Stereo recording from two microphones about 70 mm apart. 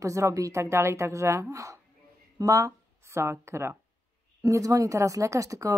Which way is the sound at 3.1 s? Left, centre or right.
Right.